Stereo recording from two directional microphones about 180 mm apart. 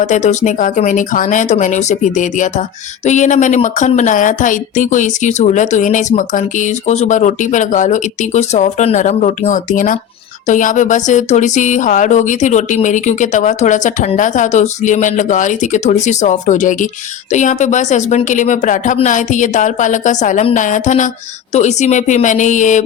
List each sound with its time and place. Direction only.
0.0 s speech: 40° left (ahead or behind)